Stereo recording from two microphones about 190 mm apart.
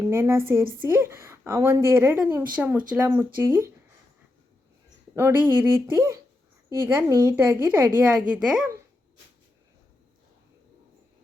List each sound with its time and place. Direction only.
0.1 s a woman's voice: 15° right (ahead or behind)
3.1 s a woman's voice: 20° right (ahead or behind)
5.1 s a woman's voice: 10° right (ahead or behind)